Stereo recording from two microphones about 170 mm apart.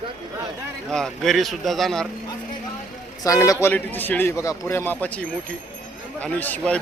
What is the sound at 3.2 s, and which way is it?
A man's voice, 20° left (ahead or behind).